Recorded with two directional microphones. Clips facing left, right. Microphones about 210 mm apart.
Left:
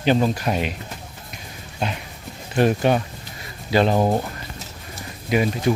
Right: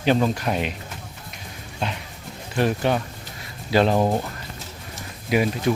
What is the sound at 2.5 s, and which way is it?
Speech, 20° left (ahead or behind).